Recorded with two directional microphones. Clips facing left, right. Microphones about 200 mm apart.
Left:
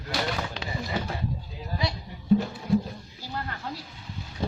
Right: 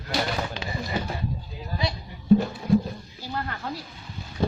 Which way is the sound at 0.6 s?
Centre (ahead or behind).